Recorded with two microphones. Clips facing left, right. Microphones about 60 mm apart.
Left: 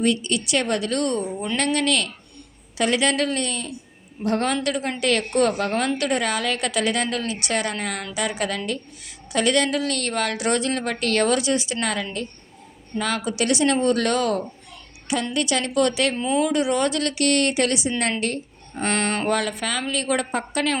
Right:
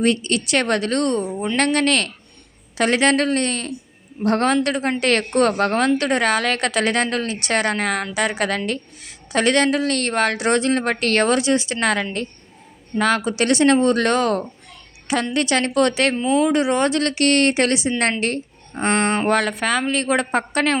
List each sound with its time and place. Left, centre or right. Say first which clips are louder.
0.0 s speech: right 3 dB; right
4.5 s a woman's voice: right 5 dB; right
16.4 s a woman's voice: right 2 dB; right
18.8 s speech: right 4 dB; right
19.3 s speech: right 5 dB; right